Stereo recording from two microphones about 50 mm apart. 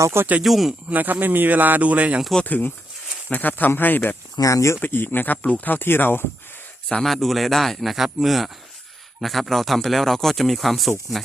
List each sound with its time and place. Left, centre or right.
0.4 s speech: centre
0.9 s speech: right
2.4 s speech: left
4.4 s speech: left
4.8 s speech: left
6.8 s speech: centre